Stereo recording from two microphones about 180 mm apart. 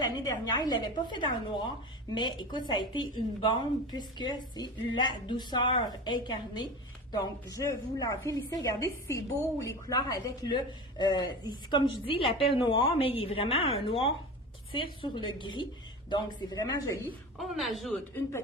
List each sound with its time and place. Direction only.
0.0 s a woman's voice: 20° left (ahead or behind)
17.3 s a woman's voice: centre (ahead or behind)
18.1 s a woman's voice: 15° left (ahead or behind)